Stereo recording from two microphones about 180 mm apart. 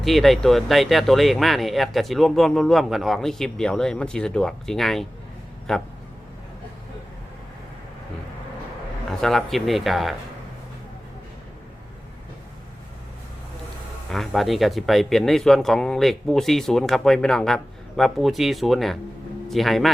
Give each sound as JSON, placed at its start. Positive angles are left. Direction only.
{"t": 0.0, "sound": "speech", "side_deg": 0}
{"t": 9.0, "sound": "speech", "side_deg": 0}
{"t": 14.1, "sound": "speech", "side_deg": 0}